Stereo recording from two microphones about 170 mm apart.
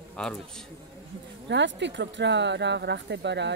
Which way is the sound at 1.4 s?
90° right.